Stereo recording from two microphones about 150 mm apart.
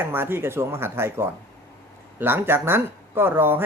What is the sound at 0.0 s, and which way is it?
Speech, 15° right (ahead or behind).